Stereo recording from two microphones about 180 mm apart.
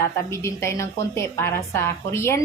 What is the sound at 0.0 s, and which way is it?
A woman's voice, 15° left (ahead or behind).